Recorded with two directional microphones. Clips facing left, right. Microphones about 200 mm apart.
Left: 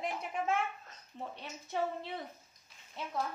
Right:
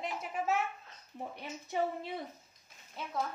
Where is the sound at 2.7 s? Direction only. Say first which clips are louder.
Right 3 dB; 50° right (ahead or behind).